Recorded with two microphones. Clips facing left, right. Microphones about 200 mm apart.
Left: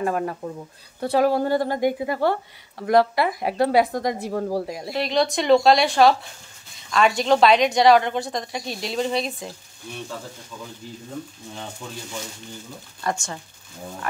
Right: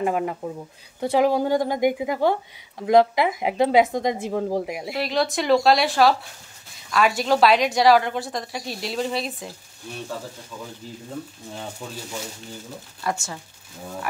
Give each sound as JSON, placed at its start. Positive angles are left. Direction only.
{"t": 0.0, "sound": "a woman's voice", "side_deg": -15}
{"t": 5.0, "sound": "a woman's voice", "side_deg": 0}
{"t": 13.0, "sound": "a woman's voice", "side_deg": -5}